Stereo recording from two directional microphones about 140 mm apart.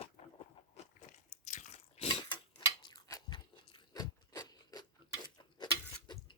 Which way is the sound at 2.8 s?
30° left (ahead or behind).